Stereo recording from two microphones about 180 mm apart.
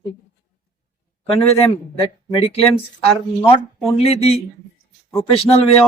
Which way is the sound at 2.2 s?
30° left (ahead or behind).